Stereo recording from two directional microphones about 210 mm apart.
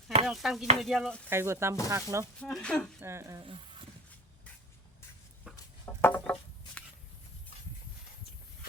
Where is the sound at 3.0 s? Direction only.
15° right (ahead or behind).